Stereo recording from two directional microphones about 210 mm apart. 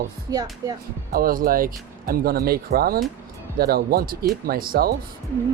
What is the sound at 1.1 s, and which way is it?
Speech, 45° right (ahead or behind).